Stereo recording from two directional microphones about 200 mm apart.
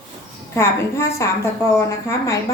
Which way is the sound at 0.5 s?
10° left (ahead or behind).